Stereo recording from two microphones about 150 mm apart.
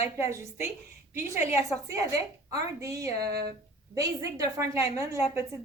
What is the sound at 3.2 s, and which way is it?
Speech, 90° right.